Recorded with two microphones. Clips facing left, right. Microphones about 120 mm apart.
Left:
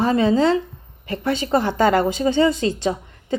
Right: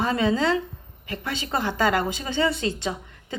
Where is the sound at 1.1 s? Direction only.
40° left (ahead or behind).